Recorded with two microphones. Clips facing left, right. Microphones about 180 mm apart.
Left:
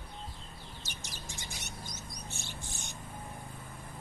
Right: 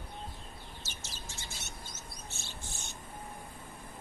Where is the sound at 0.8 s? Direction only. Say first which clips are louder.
Left 1 dB; 15° left (ahead or behind).